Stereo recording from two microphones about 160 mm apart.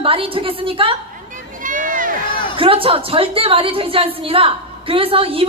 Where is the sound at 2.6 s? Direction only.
35° right (ahead or behind).